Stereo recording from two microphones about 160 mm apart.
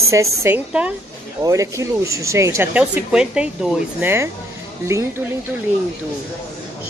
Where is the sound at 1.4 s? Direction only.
20° right (ahead or behind).